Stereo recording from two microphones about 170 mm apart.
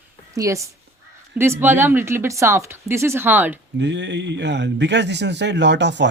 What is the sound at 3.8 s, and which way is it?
Speech, 90° right.